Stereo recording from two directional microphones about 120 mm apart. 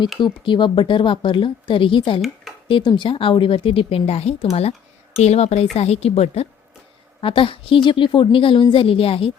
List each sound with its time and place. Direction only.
0.2 s a woman's voice: 40° left (ahead or behind); by 6.5 s 55° left (ahead or behind)
7.2 s a woman's voice: 45° left (ahead or behind)